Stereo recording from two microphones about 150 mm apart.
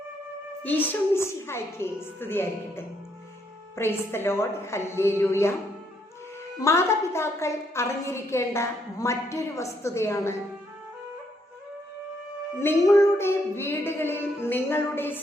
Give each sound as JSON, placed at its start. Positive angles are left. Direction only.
{"t": 0.6, "sound": "child singing", "side_deg": 10}
{"t": 6.6, "sound": "a woman's voice", "side_deg": 20}
{"t": 12.5, "sound": "child singing", "side_deg": 15}